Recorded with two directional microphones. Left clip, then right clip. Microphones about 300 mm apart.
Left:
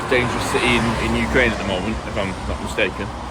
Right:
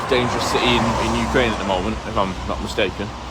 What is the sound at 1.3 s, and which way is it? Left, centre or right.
Speech, centre.